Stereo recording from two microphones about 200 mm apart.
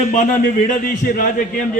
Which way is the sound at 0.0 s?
40° left (ahead or behind).